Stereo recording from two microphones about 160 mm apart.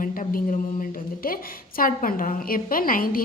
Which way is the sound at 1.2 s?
65° left (ahead or behind).